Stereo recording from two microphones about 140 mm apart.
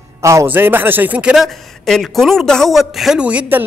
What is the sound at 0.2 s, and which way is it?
A man's voice, 20° right (ahead or behind).